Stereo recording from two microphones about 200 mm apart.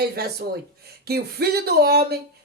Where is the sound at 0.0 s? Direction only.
55° right (ahead or behind).